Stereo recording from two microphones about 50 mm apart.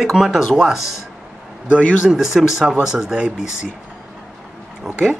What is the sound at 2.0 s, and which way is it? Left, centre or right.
Speech, centre.